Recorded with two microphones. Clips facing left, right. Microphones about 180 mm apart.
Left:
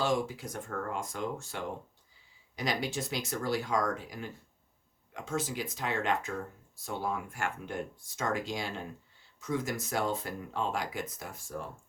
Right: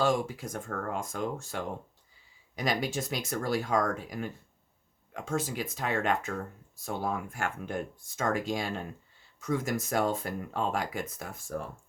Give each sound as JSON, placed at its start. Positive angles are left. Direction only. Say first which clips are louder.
{"t": 0.0, "sound": "speech", "louder": "right 3 dB", "side_deg": -50}